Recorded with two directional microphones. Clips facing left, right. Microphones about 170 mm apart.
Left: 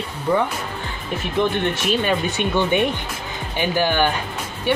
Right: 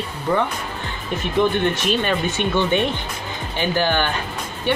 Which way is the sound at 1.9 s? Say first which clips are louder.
Even; 10° left (ahead or behind).